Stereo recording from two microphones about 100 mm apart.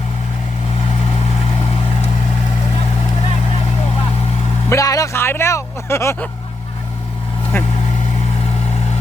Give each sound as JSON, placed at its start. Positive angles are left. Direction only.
{"t": 4.7, "sound": "vehicle", "side_deg": 35}
{"t": 7.5, "sound": "vehicle", "side_deg": 25}